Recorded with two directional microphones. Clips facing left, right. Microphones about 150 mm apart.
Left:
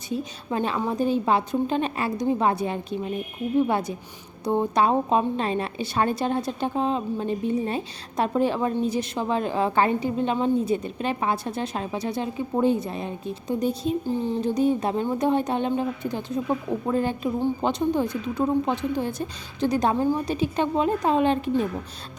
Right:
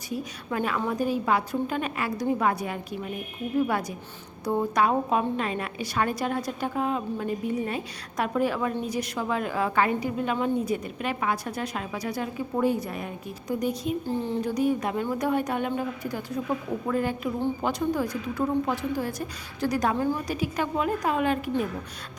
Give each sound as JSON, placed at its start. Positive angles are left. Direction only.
{"t": 0.1, "sound": "a woman's voice", "side_deg": 25}
{"t": 14.1, "sound": "a woman's voice", "side_deg": 15}